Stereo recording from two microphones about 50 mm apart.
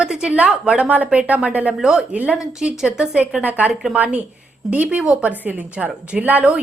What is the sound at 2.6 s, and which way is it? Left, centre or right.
Speech, centre.